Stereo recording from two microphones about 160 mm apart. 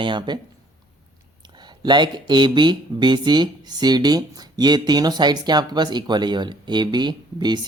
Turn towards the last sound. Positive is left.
turn(degrees=-25)  # may be behind; listen again after turning